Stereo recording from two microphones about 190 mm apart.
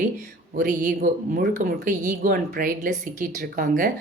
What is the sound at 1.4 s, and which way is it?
Speech, 55° right (ahead or behind).